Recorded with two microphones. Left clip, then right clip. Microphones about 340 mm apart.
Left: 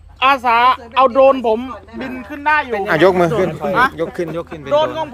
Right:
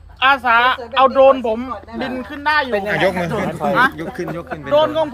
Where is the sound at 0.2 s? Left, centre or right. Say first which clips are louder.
Left 1 dB; left.